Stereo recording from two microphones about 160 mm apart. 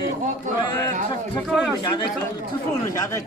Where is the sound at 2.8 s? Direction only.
20° left (ahead or behind).